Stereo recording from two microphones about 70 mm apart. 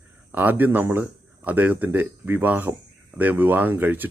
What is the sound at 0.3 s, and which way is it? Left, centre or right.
Speech, right.